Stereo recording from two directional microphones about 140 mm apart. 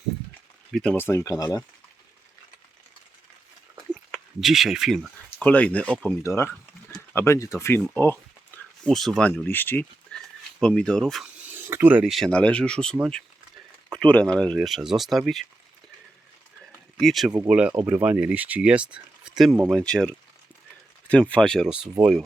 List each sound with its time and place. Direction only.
0.7 s speech: 5° left (ahead or behind)
0.9 s speech: 15° left (ahead or behind)
1.2 s speech: 25° left (ahead or behind)
4.1 s speech: centre (ahead or behind)
5.5 s speech: 10° left (ahead or behind)
6.2 s speech: 20° left (ahead or behind)
8.5 s a sound: 5° left (ahead or behind)
9.3 s speech: 15° left (ahead or behind)
11.5 s a sound: 15° right (ahead or behind)
12.1 s speech: 5° left (ahead or behind)
17.0 s speech: centre (ahead or behind)
17.5 s speech: 10° right (ahead or behind); by 21.7 s 5° left (ahead or behind)